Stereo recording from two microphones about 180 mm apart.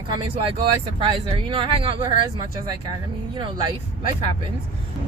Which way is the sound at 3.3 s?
25° right (ahead or behind).